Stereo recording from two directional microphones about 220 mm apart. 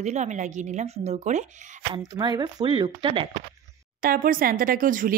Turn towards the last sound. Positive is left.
turn(degrees=-40)  # may be behind; listen again after turning